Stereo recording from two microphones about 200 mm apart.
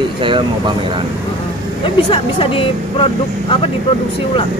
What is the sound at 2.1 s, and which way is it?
Speech, 25° left (ahead or behind).